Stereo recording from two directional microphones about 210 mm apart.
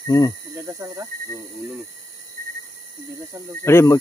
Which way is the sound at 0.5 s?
15° right (ahead or behind).